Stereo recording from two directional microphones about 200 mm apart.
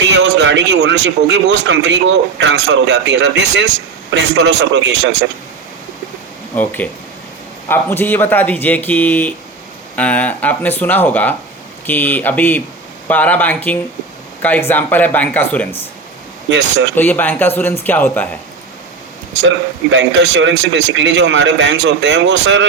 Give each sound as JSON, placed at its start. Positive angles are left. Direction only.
{"t": 0.0, "sound": "speech", "side_deg": -60}
{"t": 6.6, "sound": "speech", "side_deg": 10}
{"t": 16.5, "sound": "speech", "side_deg": -65}
{"t": 16.9, "sound": "speech", "side_deg": 10}
{"t": 19.9, "sound": "speech", "side_deg": -60}